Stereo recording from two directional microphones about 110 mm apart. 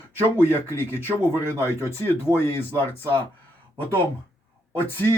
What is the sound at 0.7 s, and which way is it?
Speech, 20° left (ahead or behind).